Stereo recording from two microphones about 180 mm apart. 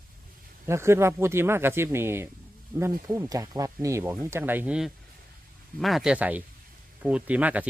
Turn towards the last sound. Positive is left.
turn(degrees=-10)  # may be behind; listen again after turning